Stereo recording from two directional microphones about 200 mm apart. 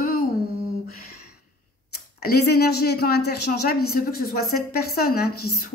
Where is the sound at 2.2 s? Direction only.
50° left (ahead or behind).